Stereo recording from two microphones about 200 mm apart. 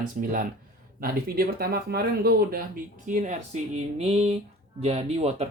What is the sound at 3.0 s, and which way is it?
Speech, 40° right (ahead or behind).